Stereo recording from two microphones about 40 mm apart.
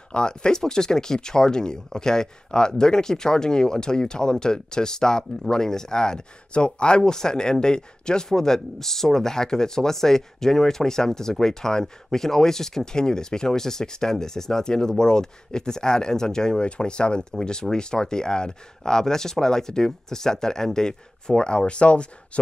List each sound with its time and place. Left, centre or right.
0.1 s speech: left